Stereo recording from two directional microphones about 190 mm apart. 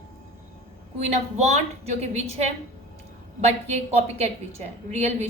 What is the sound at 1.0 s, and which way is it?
A woman's voice, 35° right (ahead or behind).